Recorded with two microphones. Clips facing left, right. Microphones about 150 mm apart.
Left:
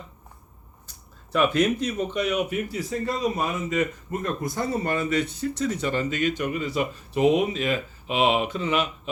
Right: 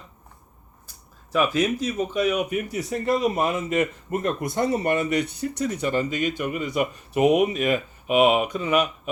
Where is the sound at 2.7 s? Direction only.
20° right (ahead or behind).